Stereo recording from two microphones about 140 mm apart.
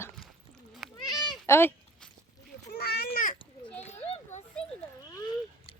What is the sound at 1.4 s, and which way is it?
Speech, 15° left (ahead or behind).